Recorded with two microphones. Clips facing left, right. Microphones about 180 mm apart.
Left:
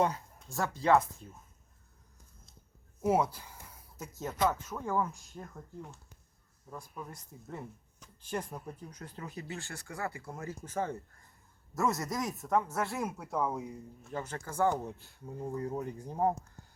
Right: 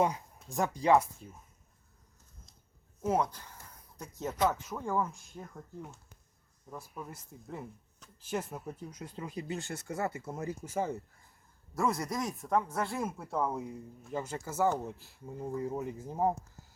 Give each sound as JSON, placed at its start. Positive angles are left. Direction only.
{"t": 0.0, "sound": "a sound", "side_deg": -5}
{"t": 0.5, "sound": "speech", "side_deg": -15}
{"t": 3.0, "sound": "speech", "side_deg": 10}